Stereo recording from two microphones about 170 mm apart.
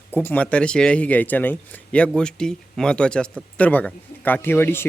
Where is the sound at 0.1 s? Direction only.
10° left (ahead or behind).